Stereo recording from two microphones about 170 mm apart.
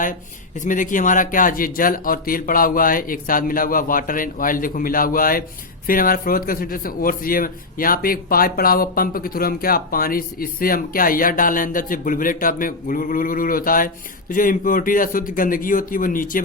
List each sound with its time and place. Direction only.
0.6 s speech: 50° left (ahead or behind)